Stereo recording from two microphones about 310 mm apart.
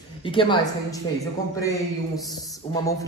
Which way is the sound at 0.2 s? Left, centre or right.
Centre.